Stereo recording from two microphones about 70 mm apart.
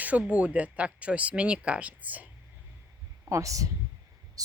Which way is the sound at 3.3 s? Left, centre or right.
Right.